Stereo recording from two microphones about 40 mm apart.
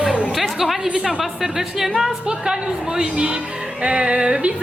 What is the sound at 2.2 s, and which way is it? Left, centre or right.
A woman's voice, centre.